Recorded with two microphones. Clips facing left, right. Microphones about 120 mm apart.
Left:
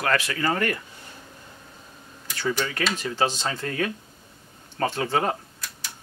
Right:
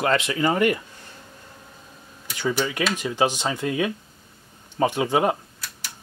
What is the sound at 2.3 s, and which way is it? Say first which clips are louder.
A man's voice: right 2 dB; 15° right (ahead or behind).